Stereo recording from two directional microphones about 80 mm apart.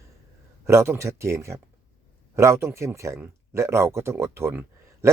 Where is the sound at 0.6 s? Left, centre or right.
Right.